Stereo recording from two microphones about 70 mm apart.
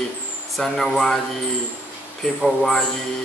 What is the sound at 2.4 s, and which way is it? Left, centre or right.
Speech, centre.